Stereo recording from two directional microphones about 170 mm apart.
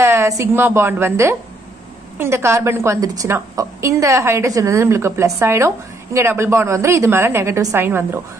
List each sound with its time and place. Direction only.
0.0 s a woman's voice: 15° right (ahead or behind)